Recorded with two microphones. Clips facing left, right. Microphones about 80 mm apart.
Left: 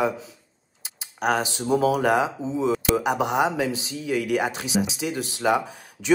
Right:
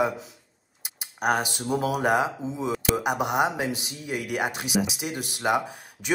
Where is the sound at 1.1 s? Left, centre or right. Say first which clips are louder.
Left 1 dB; centre.